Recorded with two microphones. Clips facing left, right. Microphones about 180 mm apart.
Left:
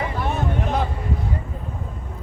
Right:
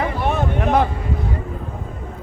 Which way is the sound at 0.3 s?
70° right (ahead or behind).